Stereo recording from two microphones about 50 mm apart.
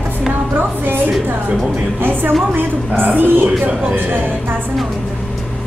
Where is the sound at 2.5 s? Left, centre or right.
Right.